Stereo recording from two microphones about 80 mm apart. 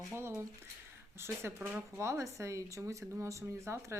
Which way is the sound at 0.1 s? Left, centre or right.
Right.